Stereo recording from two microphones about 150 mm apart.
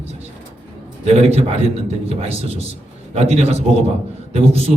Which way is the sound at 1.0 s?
45° right (ahead or behind).